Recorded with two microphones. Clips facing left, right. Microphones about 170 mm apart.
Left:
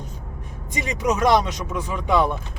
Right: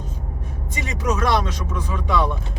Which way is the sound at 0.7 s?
15° left (ahead or behind).